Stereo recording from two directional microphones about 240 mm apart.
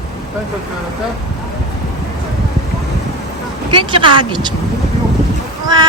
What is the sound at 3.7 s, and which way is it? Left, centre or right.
Speech, right.